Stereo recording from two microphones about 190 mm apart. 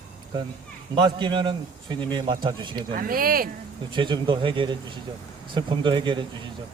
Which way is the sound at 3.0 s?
50° right (ahead or behind).